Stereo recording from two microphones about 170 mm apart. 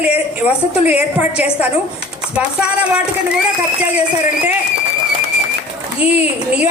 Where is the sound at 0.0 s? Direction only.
10° right (ahead or behind).